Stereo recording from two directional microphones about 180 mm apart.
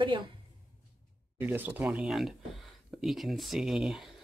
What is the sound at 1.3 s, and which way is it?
Speech, 10° right (ahead or behind).